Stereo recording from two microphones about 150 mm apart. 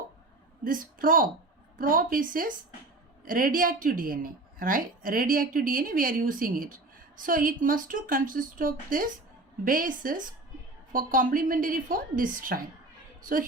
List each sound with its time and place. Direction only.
0.6 s a woman's voice: 65° right (ahead or behind)